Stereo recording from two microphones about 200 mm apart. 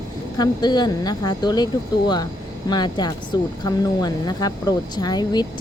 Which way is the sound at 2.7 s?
20° left (ahead or behind).